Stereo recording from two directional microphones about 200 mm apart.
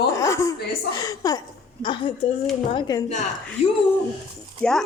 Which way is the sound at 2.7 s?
20° left (ahead or behind).